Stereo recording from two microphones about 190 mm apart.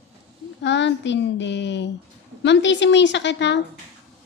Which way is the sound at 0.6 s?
70° left (ahead or behind).